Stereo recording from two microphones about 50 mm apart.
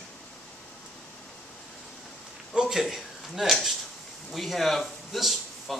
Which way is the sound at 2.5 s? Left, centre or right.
Centre.